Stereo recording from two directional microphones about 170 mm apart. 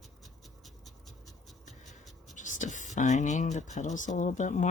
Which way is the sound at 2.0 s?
Centre (ahead or behind).